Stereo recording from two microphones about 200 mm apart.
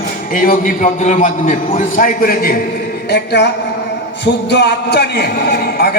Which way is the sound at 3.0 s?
55° left (ahead or behind).